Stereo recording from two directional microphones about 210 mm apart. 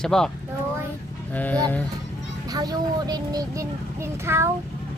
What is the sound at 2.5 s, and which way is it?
A child's voice, 20° right (ahead or behind).